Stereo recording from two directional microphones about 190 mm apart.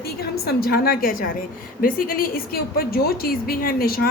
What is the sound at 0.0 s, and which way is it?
A woman's voice, 55° left (ahead or behind).